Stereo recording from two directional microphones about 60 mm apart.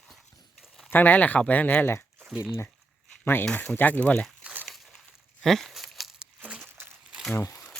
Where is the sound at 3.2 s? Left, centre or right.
Left.